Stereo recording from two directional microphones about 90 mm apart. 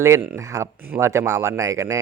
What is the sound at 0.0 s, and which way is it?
Speech, 35° right (ahead or behind).